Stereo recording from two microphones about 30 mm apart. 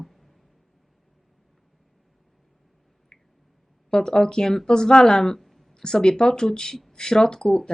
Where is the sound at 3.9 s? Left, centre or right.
Centre.